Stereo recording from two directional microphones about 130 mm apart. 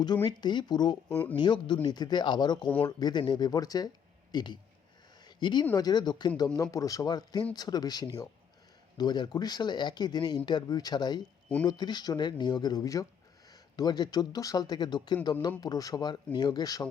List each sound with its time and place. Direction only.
0.0 s speech: 35° left (ahead or behind)
5.2 s a sound: 35° left (ahead or behind)
5.7 s speech: 30° left (ahead or behind)
11.2 s speech: 10° left (ahead or behind)
11.6 s speech: 30° left (ahead or behind)